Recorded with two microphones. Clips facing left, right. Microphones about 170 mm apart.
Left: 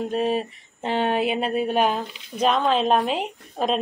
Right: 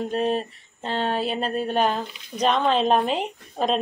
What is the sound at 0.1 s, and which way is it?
Speech, 5° left (ahead or behind).